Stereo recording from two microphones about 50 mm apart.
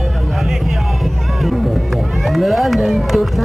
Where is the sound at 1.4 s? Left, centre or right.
Centre.